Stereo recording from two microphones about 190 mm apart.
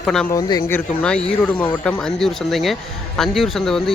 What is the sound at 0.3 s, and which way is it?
Speech, 20° left (ahead or behind).